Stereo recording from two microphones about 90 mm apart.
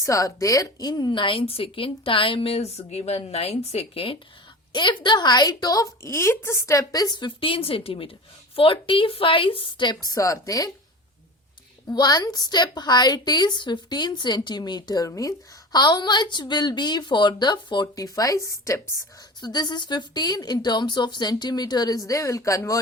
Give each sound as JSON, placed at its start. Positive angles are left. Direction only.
{"t": 0.0, "sound": "a woman's voice", "side_deg": 35}
{"t": 1.2, "sound": "a woman's voice", "side_deg": 75}
{"t": 3.9, "sound": "speech", "side_deg": 90}
{"t": 4.7, "sound": "a woman's voice", "side_deg": 60}
{"t": 11.9, "sound": "a woman's voice", "side_deg": 50}
{"t": 18.0, "sound": "a woman's voice", "side_deg": 40}
{"t": 19.4, "sound": "a woman's voice", "side_deg": 50}